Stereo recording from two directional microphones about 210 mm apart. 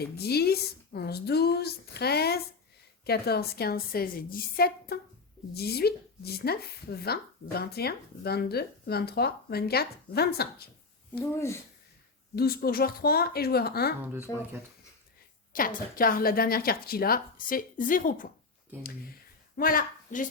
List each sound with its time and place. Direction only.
0.0 s speech: 50° left (ahead or behind)
11.2 s speech: 15° left (ahead or behind)
12.4 s speech: 45° left (ahead or behind)
15.5 s speech: 40° left (ahead or behind)
19.5 s a woman's voice: 40° left (ahead or behind)